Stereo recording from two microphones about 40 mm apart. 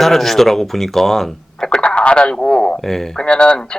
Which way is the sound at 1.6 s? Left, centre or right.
Left.